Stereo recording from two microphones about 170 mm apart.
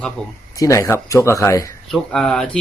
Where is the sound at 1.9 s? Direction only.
5° left (ahead or behind).